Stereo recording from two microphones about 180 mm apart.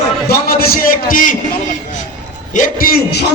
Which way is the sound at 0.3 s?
60° left (ahead or behind).